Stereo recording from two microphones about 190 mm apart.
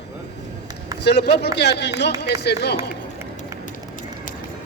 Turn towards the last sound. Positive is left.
turn(degrees=-10)  # may be behind; listen again after turning